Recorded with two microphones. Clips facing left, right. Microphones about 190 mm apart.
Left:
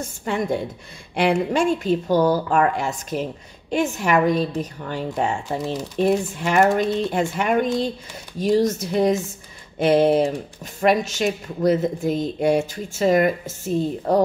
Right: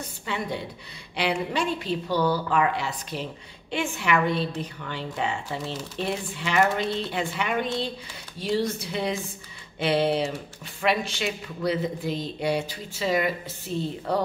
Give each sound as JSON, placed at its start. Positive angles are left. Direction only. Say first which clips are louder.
{"t": 0.0, "sound": "speech", "louder": "left 7 dB", "side_deg": 45}